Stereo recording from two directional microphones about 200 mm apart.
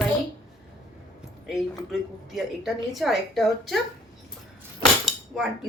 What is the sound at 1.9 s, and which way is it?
A woman's voice, centre (ahead or behind).